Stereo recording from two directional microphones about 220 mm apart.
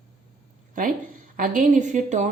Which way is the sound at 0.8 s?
40° right (ahead or behind).